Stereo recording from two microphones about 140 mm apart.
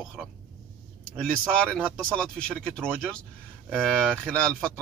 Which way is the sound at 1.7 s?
10° left (ahead or behind).